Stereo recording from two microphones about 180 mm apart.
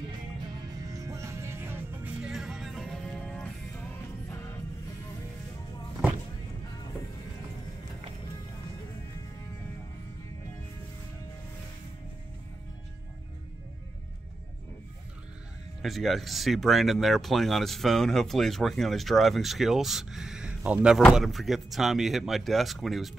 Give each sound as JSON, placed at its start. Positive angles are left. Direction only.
{"t": 0.8, "sound": "music", "side_deg": -20}
{"t": 15.8, "sound": "speech", "side_deg": 0}